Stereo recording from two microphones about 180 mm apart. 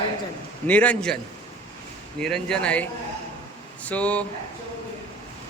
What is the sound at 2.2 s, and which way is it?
A man's voice, 5° left (ahead or behind).